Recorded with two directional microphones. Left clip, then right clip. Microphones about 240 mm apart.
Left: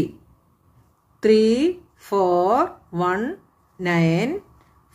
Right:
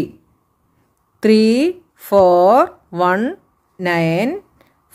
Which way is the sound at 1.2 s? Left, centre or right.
Right.